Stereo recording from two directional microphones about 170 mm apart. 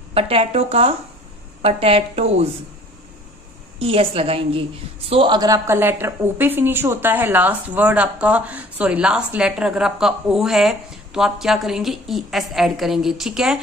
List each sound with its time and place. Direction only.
0.1 s a woman's voice: 35° right (ahead or behind)
3.8 s a woman's voice: 35° right (ahead or behind); by 13.6 s 5° right (ahead or behind)